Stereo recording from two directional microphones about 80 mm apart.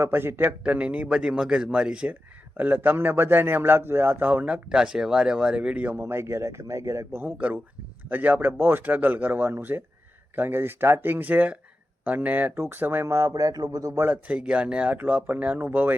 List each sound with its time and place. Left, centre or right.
0.0 s a man's voice: right
0.6 s speech: centre
2.6 s a man's voice: right
6.0 s speech: right
7.3 s a man's voice: centre; by 14.0 s right
14.0 s a man's voice: right